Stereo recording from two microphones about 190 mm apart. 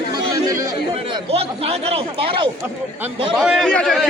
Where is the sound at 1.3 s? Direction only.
30° right (ahead or behind).